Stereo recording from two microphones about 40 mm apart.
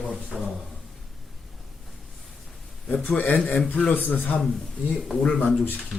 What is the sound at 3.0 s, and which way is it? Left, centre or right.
Speech, left.